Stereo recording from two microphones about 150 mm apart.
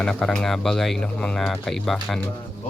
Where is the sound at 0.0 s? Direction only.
5° left (ahead or behind).